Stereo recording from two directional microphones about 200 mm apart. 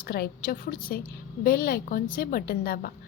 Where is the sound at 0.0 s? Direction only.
45° left (ahead or behind).